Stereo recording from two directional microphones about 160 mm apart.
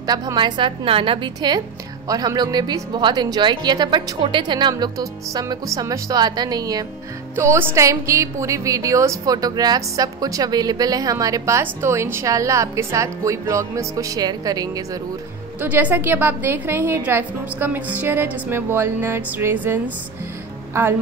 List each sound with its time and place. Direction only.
0.0 s speech: 25° right (ahead or behind)
15.6 s a woman's voice: 10° right (ahead or behind)